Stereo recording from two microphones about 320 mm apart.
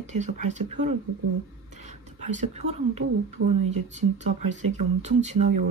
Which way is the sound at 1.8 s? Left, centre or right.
Right.